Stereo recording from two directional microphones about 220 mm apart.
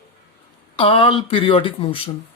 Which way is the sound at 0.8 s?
25° left (ahead or behind).